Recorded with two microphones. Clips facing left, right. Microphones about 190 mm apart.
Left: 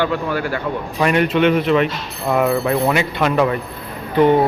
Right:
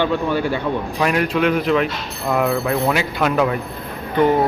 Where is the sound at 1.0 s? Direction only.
Centre (ahead or behind).